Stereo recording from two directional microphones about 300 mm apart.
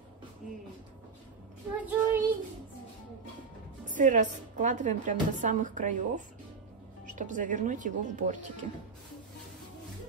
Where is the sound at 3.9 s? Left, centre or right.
Right.